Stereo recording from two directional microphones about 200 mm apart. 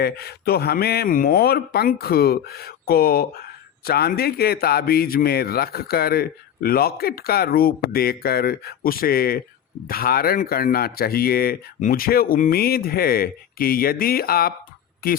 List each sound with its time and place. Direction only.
0.0 s speech: 50° left (ahead or behind)